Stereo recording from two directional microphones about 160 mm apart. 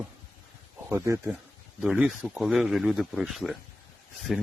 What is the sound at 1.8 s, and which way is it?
Speech, 5° right (ahead or behind).